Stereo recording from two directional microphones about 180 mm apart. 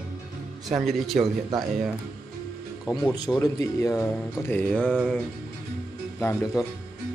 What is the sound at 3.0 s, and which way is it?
Speech, 20° left (ahead or behind).